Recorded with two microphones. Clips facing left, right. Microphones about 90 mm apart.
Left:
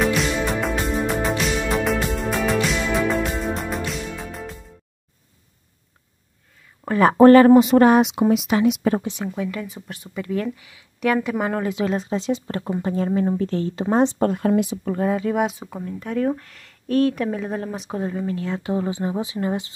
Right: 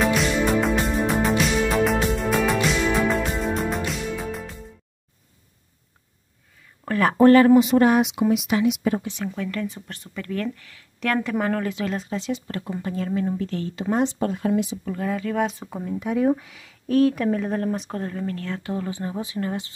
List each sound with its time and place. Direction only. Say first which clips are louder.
0.0 s music: even; centre (ahead or behind)
6.8 s a sound: left 4 dB; 20° left (ahead or behind)
7.2 s speech: left 3 dB; 40° left (ahead or behind)
9.0 s speech: left 2 dB; 20° left (ahead or behind)
14.2 s speech: left 4 dB; 50° left (ahead or behind)
15.0 s speech: left 4 dB; 25° left (ahead or behind)
15.7 s speech: right 1 dB; 5° right (ahead or behind); by 19.7 s 20° left (ahead or behind)